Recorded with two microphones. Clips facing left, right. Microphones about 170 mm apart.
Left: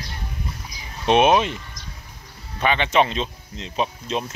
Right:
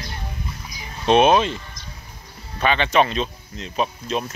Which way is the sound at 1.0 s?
15° left (ahead or behind).